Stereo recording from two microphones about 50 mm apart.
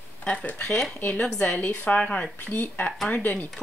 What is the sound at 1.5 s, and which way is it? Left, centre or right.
Speech, left.